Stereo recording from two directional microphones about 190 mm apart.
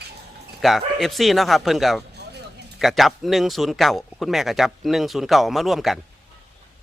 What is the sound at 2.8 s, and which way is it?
Speech, centre (ahead or behind).